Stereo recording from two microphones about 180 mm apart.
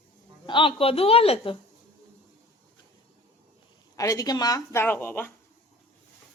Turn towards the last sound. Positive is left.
turn(degrees=10)  # may be behind; listen again after turning